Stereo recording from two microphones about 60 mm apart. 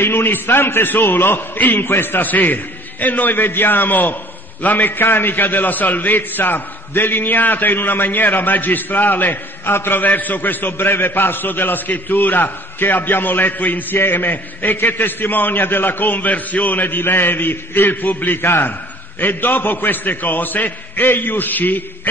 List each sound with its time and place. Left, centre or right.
0.0 s a man's voice: left